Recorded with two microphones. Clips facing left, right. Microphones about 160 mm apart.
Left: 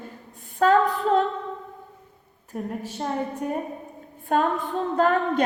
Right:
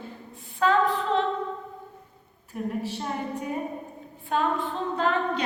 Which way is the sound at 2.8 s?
45° left (ahead or behind).